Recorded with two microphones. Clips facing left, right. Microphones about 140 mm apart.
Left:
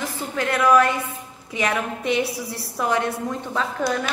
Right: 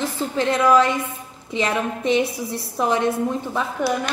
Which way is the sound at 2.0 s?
20° right (ahead or behind).